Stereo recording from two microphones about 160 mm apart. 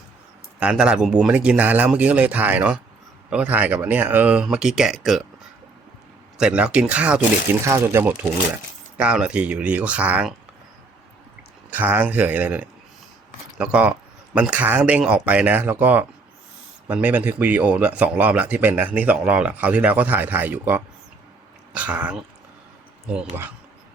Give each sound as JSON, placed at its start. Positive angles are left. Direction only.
{"t": 0.6, "sound": "speech", "side_deg": -5}
{"t": 6.3, "sound": "speech", "side_deg": -5}
{"t": 9.0, "sound": "speech", "side_deg": -5}
{"t": 11.7, "sound": "speech", "side_deg": -10}